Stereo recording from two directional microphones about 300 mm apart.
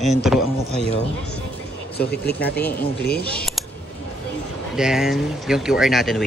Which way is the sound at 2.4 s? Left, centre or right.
Centre.